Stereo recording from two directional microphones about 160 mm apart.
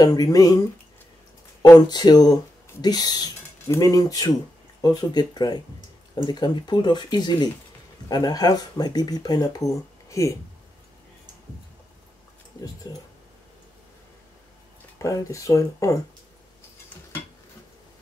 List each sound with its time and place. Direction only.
0.0 s speech: 25° left (ahead or behind)
1.6 s speech: 25° left (ahead or behind)
12.6 s speech: 25° left (ahead or behind)
15.0 s speech: 20° left (ahead or behind)